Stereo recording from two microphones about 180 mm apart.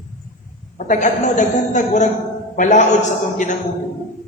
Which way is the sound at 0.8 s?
45° left (ahead or behind).